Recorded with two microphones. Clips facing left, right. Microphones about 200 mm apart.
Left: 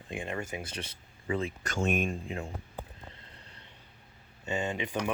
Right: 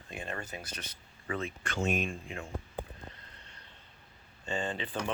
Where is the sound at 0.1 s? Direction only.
15° left (ahead or behind).